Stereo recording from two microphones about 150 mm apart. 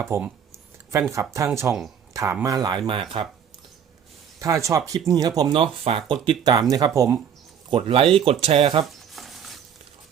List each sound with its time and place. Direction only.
0.0 s speech: 15° right (ahead or behind); by 3.2 s 35° right (ahead or behind)
4.4 s speech: 20° right (ahead or behind)
5.9 s speech: 40° right (ahead or behind)
6.2 s speech: 30° right (ahead or behind)
7.7 s speech: 35° right (ahead or behind)
8.8 s a sound: centre (ahead or behind)